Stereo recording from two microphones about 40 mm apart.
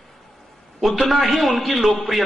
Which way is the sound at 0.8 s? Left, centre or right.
Centre.